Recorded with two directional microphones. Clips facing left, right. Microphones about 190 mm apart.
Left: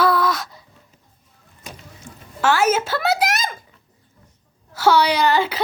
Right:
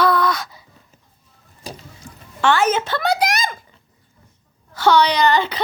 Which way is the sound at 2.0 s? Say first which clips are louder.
Left 1 dB; 25° left (ahead or behind).